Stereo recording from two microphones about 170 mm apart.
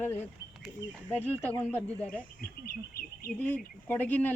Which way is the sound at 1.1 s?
10° left (ahead or behind).